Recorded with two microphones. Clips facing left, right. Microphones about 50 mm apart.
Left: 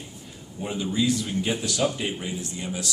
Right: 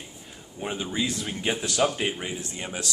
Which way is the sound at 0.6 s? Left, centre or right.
Right.